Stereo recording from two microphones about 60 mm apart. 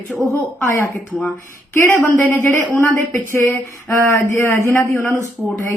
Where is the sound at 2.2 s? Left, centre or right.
Left.